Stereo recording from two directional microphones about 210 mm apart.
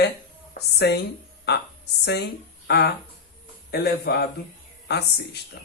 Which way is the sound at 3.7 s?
50° left (ahead or behind).